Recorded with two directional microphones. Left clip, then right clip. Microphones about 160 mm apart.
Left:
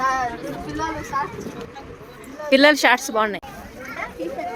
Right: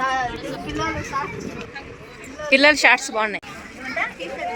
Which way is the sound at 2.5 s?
30° left (ahead or behind).